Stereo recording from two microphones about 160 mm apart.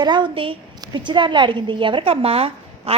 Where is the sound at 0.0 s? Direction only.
30° right (ahead or behind).